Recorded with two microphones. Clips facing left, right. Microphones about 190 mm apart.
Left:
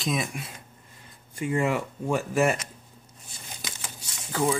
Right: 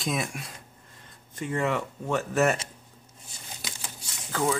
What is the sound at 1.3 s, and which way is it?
Speech, 15° left (ahead or behind).